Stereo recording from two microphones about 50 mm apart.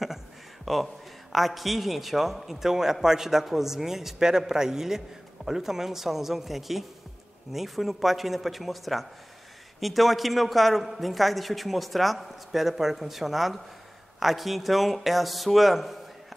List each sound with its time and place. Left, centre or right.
0.7 s a man's voice: centre